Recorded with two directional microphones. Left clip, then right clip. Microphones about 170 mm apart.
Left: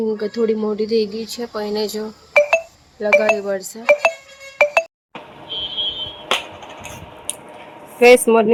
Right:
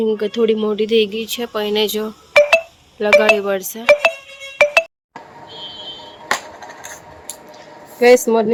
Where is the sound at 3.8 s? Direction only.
Centre (ahead or behind).